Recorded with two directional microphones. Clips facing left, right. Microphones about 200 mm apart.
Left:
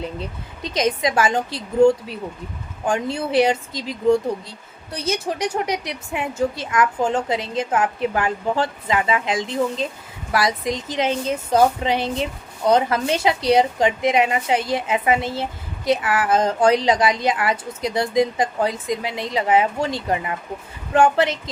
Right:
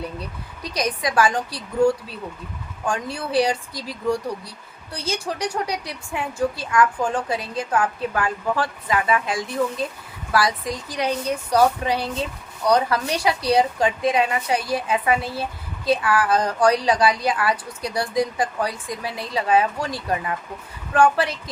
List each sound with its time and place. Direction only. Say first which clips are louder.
0.0 s speech: left 2 dB; 25° left (ahead or behind)